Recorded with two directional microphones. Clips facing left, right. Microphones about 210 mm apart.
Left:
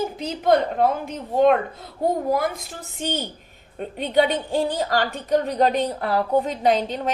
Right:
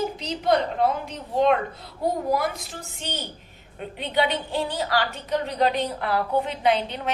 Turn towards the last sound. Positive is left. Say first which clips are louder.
# left 3 dB
turn(degrees=40)  # may be behind; listen again after turning